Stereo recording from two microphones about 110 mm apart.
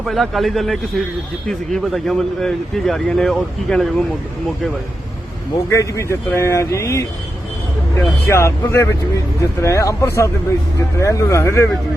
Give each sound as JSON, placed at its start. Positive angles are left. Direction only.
{"t": 0.0, "sound": "speech", "side_deg": 0}
{"t": 5.7, "sound": "speech", "side_deg": 30}